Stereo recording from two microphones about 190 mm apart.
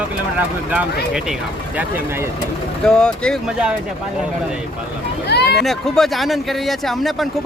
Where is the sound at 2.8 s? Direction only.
5° left (ahead or behind).